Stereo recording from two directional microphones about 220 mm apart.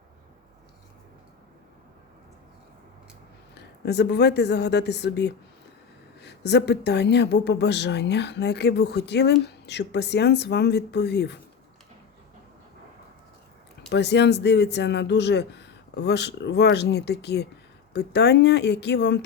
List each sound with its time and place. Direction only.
3.5 s a woman's voice: 50° left (ahead or behind)
13.9 s a woman's voice: 50° left (ahead or behind)